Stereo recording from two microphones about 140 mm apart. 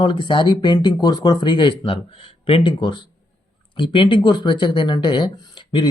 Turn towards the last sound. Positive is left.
turn(degrees=35)  # may be behind; listen again after turning